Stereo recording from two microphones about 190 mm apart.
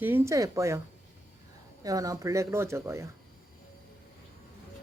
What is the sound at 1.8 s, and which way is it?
Speech, 20° right (ahead or behind).